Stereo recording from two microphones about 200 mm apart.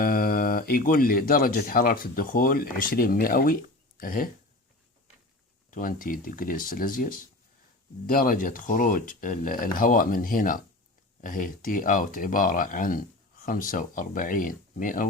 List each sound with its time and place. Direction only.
0.0 s speech: 45° left (ahead or behind)
5.7 s speech: 45° left (ahead or behind)